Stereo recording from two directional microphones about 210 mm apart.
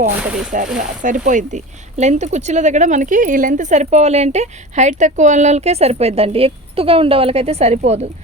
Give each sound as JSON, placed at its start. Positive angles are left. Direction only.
{"t": 0.2, "sound": "speech", "side_deg": -5}
{"t": 0.8, "sound": "speech", "side_deg": -40}